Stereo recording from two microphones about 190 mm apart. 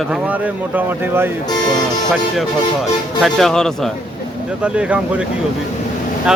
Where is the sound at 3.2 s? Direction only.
Centre (ahead or behind).